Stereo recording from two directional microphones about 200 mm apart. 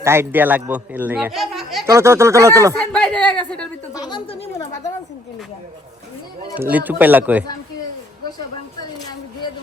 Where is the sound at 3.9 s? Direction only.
20° left (ahead or behind).